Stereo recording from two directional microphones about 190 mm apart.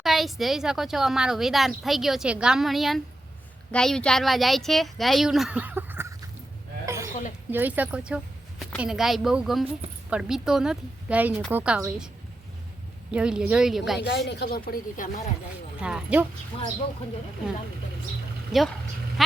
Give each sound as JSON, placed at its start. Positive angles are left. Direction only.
{"t": 0.0, "sound": "a woman's voice", "side_deg": 0}
{"t": 6.8, "sound": "a sound", "side_deg": -15}
{"t": 7.1, "sound": "a sound", "side_deg": 40}
{"t": 7.5, "sound": "a woman's voice", "side_deg": -10}
{"t": 13.1, "sound": "a woman's voice", "side_deg": -5}
{"t": 14.3, "sound": "speech", "side_deg": 55}
{"t": 15.8, "sound": "a woman's voice", "side_deg": -5}
{"t": 16.5, "sound": "speech", "side_deg": 30}
{"t": 18.5, "sound": "a woman's voice", "side_deg": 0}